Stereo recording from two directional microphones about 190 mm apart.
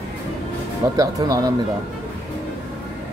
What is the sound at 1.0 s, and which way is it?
Speech, 20° right (ahead or behind).